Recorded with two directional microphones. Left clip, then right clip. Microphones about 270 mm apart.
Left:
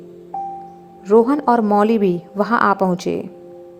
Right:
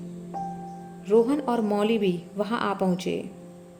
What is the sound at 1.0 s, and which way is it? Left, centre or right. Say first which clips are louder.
A woman's voice: left 8 dB; centre.